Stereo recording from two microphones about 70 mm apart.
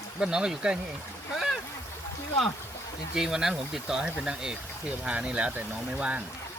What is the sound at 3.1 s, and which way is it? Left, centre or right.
Speech, centre.